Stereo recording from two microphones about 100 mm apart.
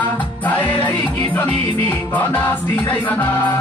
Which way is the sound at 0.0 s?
15° left (ahead or behind).